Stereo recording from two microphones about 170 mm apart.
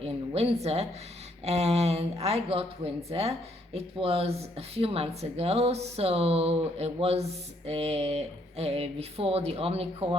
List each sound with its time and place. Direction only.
0.0 s a woman's voice: 35° right (ahead or behind)